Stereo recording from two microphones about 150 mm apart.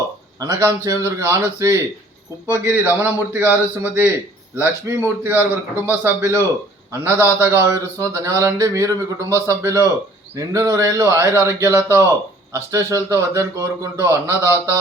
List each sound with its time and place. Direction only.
0.3 s a man's voice: 25° right (ahead or behind)